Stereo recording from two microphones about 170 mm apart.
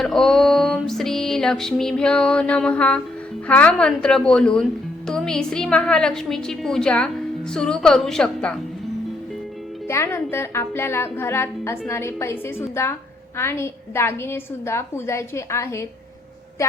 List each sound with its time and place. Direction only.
0.0 s music: centre (ahead or behind)
3.4 s a woman's voice: 10° left (ahead or behind)
9.9 s a woman's voice: 15° left (ahead or behind)